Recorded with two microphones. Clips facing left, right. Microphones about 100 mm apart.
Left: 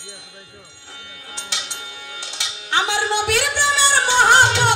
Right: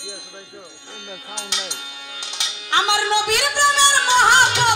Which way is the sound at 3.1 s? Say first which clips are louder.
Right 1 dB; 20° right (ahead or behind).